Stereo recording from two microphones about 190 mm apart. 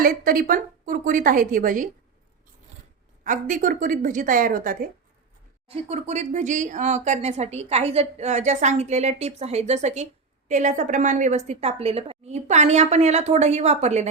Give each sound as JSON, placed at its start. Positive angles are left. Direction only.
{"t": 0.0, "sound": "speech", "side_deg": -50}
{"t": 3.2, "sound": "speech", "side_deg": -45}
{"t": 5.6, "sound": "speech", "side_deg": -30}